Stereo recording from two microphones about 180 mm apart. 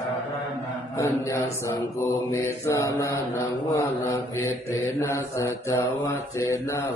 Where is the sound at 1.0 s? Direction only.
15° left (ahead or behind).